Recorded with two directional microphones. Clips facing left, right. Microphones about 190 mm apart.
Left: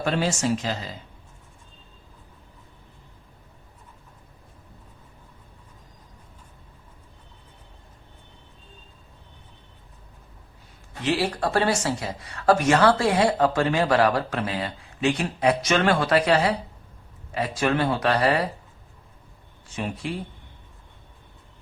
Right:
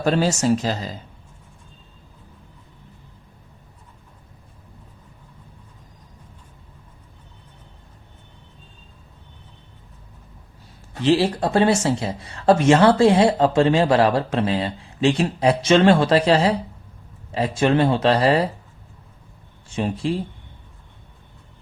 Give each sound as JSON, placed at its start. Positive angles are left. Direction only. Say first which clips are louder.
{"t": 0.0, "sound": "speech", "louder": "right 5 dB", "side_deg": -40}
{"t": 11.0, "sound": "speech", "louder": "right 6 dB", "side_deg": -30}
{"t": 19.6, "sound": "speech", "louder": "right 7 dB", "side_deg": -30}